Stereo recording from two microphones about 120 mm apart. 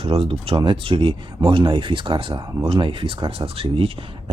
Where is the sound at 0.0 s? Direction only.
55° right (ahead or behind).